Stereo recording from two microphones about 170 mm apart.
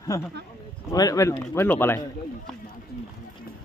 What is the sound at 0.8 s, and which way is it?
Speech, 20° left (ahead or behind).